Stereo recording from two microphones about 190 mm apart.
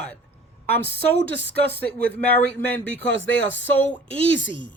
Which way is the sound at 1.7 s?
10° left (ahead or behind).